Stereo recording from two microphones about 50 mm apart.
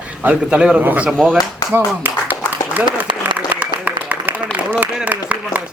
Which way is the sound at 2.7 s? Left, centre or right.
Right.